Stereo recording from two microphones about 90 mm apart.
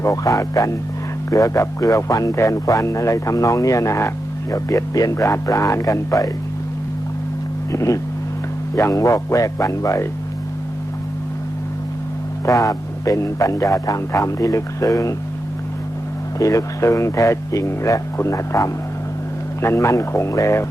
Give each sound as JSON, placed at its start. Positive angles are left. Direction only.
{"t": 0.0, "sound": "speech", "side_deg": 35}
{"t": 7.7, "sound": "speech", "side_deg": 35}
{"t": 12.5, "sound": "speech", "side_deg": 40}
{"t": 16.4, "sound": "speech", "side_deg": 35}